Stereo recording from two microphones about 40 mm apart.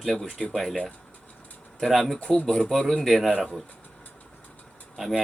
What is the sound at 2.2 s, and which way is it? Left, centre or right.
Speech, left.